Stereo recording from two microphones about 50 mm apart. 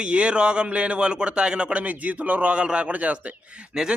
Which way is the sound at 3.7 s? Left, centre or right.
Centre.